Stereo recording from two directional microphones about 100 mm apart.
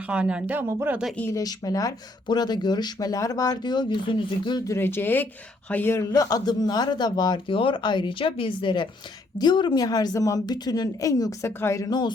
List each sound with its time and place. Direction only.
0.1 s speech: 10° right (ahead or behind)
0.7 s speech: 25° right (ahead or behind)
1.3 s a woman's voice: 35° left (ahead or behind)
4.6 s a woman's voice: 25° left (ahead or behind)
11.9 s speech: 45° left (ahead or behind)